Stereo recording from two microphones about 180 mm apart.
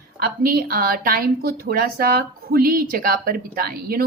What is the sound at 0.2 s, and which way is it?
A woman's voice, 55° right (ahead or behind).